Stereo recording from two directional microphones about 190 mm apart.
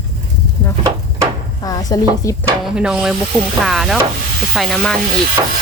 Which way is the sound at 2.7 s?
5° right (ahead or behind).